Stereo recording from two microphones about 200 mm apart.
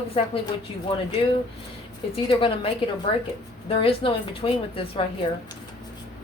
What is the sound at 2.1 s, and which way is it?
A woman's voice, 25° left (ahead or behind).